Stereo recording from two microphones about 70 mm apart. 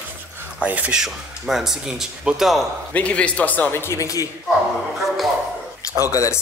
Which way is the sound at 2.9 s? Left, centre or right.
Centre.